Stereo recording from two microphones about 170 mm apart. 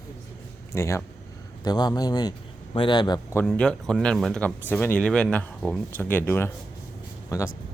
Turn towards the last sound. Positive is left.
turn(degrees=15)  # may be behind; listen again after turning